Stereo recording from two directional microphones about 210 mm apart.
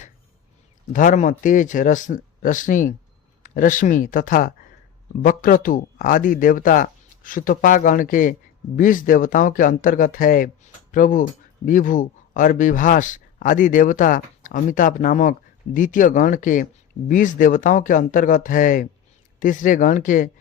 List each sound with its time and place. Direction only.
0.9 s speech: 40° left (ahead or behind)